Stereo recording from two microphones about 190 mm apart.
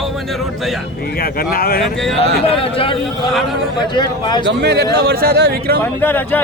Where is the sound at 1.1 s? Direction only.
50° left (ahead or behind).